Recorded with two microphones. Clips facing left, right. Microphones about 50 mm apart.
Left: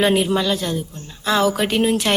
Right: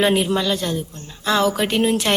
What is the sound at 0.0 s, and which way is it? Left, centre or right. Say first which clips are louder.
A woman's voice: left 1 dB; centre.